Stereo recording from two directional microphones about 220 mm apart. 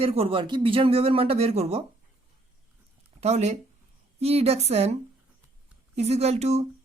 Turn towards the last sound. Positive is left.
turn(degrees=-30)  # may be behind; listen again after turning